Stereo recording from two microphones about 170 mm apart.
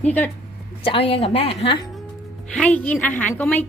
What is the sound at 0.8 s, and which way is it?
A woman's voice, 35° left (ahead or behind).